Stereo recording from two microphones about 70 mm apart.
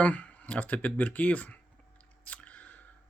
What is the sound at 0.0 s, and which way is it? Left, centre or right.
Speech, left.